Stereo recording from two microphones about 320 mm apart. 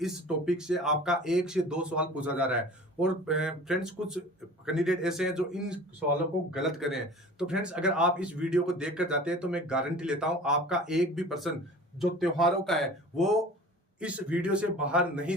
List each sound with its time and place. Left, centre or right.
0.0 s a man's voice: centre